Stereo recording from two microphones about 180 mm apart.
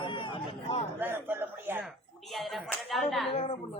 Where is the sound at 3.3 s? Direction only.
35° left (ahead or behind).